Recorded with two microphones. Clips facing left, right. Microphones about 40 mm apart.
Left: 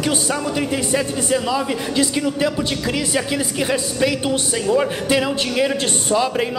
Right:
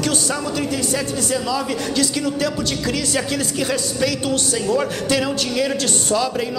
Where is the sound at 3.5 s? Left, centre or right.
Centre.